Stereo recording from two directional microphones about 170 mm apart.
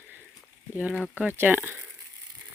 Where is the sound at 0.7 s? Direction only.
5° right (ahead or behind).